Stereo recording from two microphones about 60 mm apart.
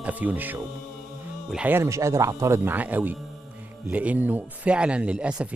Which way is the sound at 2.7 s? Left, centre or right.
Right.